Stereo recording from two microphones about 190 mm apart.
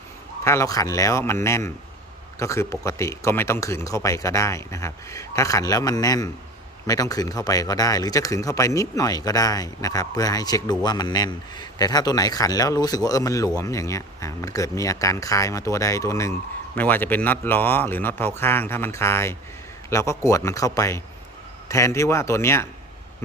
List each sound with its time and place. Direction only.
0.4 s speech: 15° left (ahead or behind)